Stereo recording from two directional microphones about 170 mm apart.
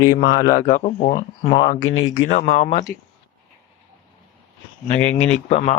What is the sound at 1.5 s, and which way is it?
Speech, 30° left (ahead or behind).